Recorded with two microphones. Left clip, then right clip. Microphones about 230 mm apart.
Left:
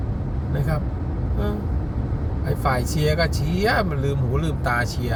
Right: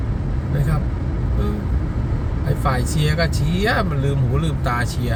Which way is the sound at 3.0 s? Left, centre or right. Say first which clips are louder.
Even; centre.